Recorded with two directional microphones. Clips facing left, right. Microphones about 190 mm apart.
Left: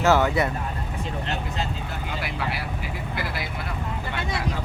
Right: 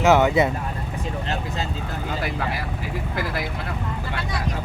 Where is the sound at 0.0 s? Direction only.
15° right (ahead or behind).